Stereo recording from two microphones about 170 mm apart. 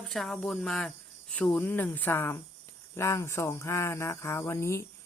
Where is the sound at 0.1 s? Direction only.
Centre (ahead or behind).